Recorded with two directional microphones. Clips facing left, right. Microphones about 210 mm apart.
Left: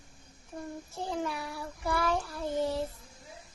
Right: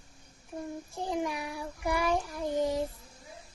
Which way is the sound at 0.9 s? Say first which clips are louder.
Right 2 dB; 15° right (ahead or behind).